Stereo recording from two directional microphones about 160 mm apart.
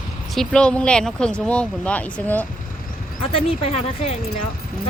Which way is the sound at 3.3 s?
40° left (ahead or behind).